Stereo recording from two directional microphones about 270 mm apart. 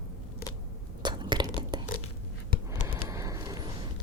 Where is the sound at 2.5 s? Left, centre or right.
Left.